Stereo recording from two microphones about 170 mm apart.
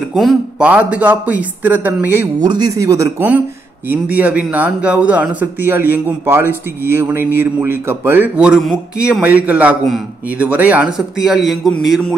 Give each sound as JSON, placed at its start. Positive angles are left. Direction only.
{"t": 0.1, "sound": "speech", "side_deg": 0}
{"t": 2.4, "sound": "a man's voice", "side_deg": -25}